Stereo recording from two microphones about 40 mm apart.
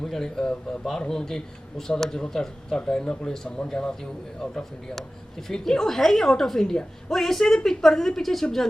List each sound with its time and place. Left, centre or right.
0.0 s a woman's voice: centre
5.5 s a woman's voice: centre